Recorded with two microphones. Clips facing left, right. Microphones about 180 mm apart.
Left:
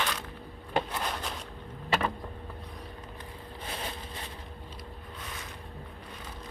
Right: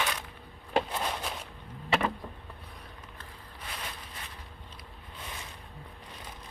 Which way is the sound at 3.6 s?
30° left (ahead or behind).